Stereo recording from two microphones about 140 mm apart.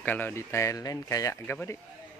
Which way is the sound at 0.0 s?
15° left (ahead or behind).